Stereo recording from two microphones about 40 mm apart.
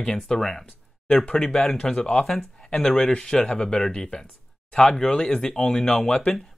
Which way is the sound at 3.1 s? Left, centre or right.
Left.